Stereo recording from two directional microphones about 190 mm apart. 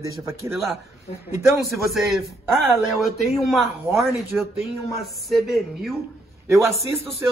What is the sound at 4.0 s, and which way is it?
A man's voice, centre (ahead or behind).